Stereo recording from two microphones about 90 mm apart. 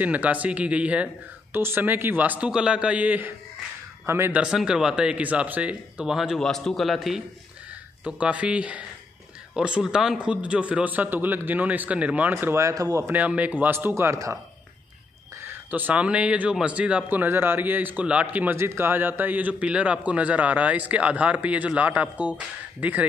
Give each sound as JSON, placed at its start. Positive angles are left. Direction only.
{"t": 0.0, "sound": "speech", "side_deg": -20}
{"t": 1.5, "sound": "speech", "side_deg": -25}
{"t": 4.3, "sound": "speech", "side_deg": -10}
{"t": 8.0, "sound": "speech", "side_deg": -15}
{"t": 13.1, "sound": "speech", "side_deg": -15}
{"t": 15.4, "sound": "speech", "side_deg": -20}